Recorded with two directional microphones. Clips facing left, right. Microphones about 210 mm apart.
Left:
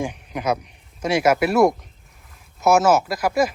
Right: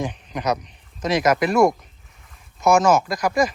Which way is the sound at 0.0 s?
10° left (ahead or behind).